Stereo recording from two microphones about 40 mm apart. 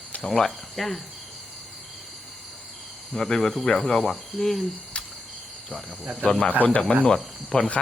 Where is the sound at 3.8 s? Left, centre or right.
Left.